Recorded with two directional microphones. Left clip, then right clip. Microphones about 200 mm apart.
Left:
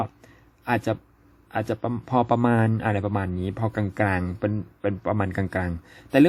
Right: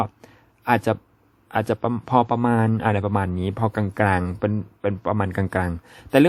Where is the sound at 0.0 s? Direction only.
20° right (ahead or behind).